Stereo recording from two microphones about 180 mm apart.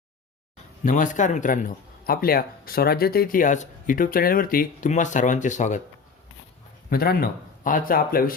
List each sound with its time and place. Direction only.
0.9 s speech: 45° left (ahead or behind)
6.9 s speech: 55° left (ahead or behind)